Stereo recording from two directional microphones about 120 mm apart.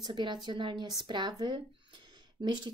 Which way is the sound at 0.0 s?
40° right (ahead or behind).